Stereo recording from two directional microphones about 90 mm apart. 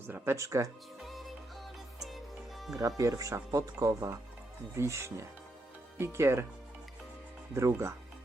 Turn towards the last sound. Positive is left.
turn(degrees=-30)  # may be behind; listen again after turning